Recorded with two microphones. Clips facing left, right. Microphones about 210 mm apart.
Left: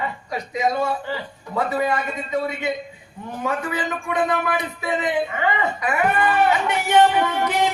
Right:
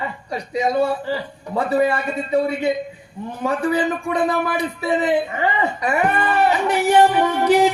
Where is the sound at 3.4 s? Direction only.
35° right (ahead or behind).